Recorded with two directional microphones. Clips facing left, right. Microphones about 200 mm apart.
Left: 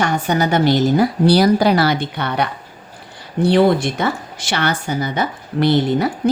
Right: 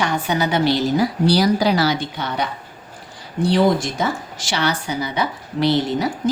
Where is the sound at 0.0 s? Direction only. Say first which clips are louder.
Left 3 dB; 50° left (ahead or behind).